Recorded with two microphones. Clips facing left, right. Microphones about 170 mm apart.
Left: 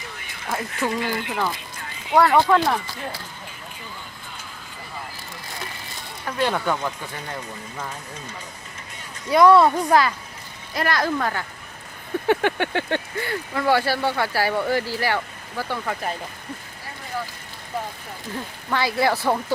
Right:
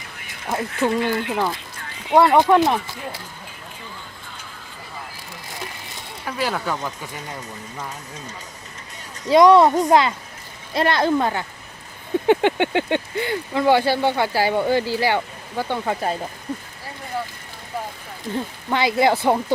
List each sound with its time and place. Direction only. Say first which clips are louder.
0.4 s speech: right 4 dB; 20° right (ahead or behind)
6.2 s speech: left 2 dB; 5° right (ahead or behind)
9.3 s speech: right 2 dB; 20° right (ahead or behind)
18.7 s speech: right 3 dB; 20° right (ahead or behind)